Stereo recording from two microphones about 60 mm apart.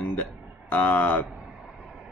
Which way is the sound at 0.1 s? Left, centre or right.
Left.